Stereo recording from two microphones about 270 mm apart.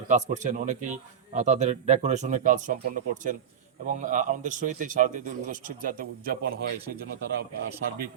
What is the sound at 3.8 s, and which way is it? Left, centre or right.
A man's voice, right.